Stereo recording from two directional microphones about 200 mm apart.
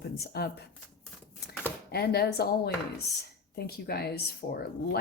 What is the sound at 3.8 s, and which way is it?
Speech, 50° left (ahead or behind).